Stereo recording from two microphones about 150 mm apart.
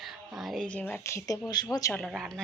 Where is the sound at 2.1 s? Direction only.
Centre (ahead or behind).